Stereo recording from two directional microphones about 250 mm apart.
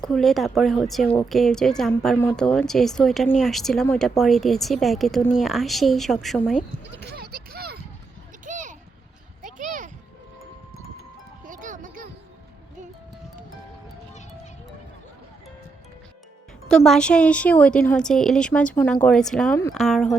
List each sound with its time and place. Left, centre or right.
0.0 s a woman's voice: centre
6.9 s a sound: right
11.4 s music: right
16.6 s a woman's voice: centre